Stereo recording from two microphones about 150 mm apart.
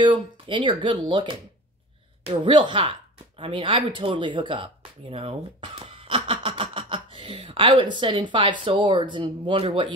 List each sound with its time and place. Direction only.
0.0 s speech: 30° right (ahead or behind)